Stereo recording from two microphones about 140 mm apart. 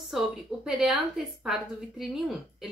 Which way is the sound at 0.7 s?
5° right (ahead or behind).